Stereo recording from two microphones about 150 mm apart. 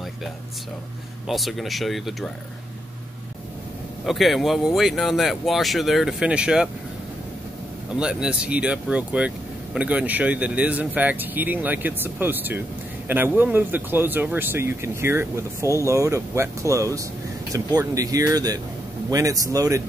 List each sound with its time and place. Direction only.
1.2 s speech: centre (ahead or behind)
4.0 s speech: centre (ahead or behind)
8.0 s speech: 5° right (ahead or behind); by 19.8 s 25° right (ahead or behind)